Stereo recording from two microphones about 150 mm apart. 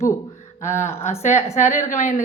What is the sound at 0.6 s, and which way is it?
A woman's voice, 55° left (ahead or behind).